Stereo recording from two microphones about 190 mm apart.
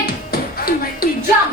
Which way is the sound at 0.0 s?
50° left (ahead or behind).